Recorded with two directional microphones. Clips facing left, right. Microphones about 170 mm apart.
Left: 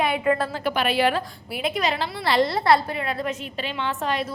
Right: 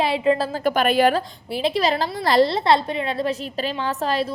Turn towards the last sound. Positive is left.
turn(degrees=-35)  # may be behind; listen again after turning